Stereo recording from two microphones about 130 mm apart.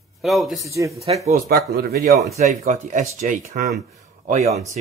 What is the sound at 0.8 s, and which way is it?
Speech, 25° right (ahead or behind).